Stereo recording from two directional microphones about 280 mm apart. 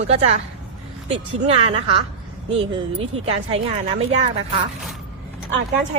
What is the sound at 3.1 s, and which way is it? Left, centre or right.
Speech, right.